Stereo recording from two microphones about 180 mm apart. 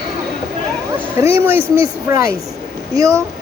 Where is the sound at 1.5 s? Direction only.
15° right (ahead or behind).